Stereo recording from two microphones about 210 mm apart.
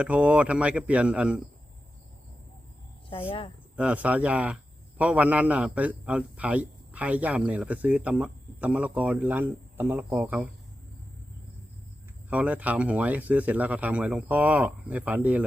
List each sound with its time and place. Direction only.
0.0 s a man's voice: 5° right (ahead or behind)
3.1 s speech: 25° left (ahead or behind)
3.8 s a man's voice: 5° right (ahead or behind)
12.3 s a man's voice: 5° right (ahead or behind)